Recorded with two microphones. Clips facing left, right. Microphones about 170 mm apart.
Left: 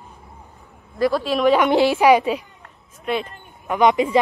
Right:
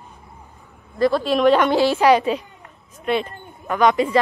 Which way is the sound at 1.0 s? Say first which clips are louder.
Right 2 dB; 5° left (ahead or behind).